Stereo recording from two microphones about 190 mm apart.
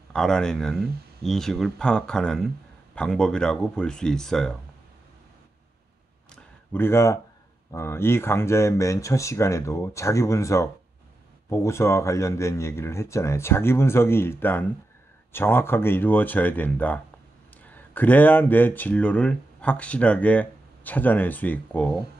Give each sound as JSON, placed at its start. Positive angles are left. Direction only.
{"t": 0.1, "sound": "speech", "side_deg": 5}
{"t": 6.7, "sound": "speech", "side_deg": 10}